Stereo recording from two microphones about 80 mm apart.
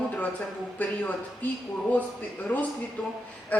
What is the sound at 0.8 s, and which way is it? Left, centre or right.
Speech, left.